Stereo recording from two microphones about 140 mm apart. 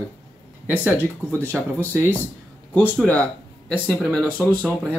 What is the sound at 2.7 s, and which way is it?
Speech, 15° left (ahead or behind).